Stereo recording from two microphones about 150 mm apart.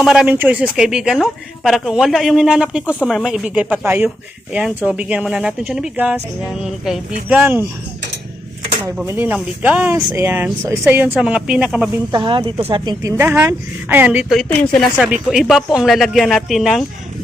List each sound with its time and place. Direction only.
0.0 s speech: 5° right (ahead or behind)
9.0 s speech: 15° right (ahead or behind)
12.1 s speech: 30° right (ahead or behind); by 14.3 s 10° right (ahead or behind)
14.4 s speech: 10° left (ahead or behind)
14.9 s speech: 10° right (ahead or behind)